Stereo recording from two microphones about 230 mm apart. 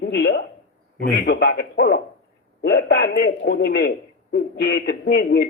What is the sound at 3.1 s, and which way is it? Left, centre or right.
A man's voice, left.